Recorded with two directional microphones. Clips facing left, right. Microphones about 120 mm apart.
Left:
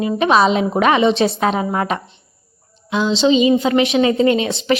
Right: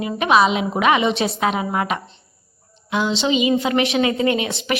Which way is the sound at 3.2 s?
30° left (ahead or behind).